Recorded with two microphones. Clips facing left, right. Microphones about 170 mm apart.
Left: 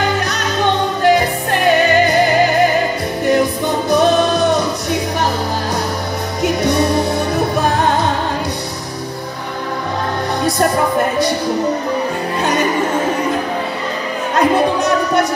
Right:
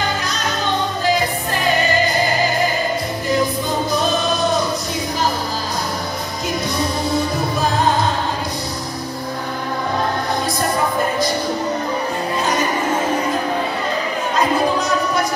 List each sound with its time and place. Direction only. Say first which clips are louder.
1.0 s music: left 8 dB; 65° left (ahead or behind)
3.3 s music: left 5 dB; 65° left (ahead or behind)
6.4 s music: left 7 dB; 70° left (ahead or behind)